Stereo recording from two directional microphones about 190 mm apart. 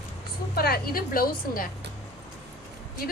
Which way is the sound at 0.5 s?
55° left (ahead or behind).